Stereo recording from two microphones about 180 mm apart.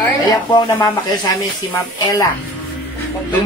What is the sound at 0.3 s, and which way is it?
A man's voice, 20° left (ahead or behind).